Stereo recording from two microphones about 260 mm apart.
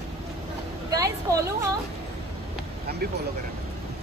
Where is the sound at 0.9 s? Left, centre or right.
Centre.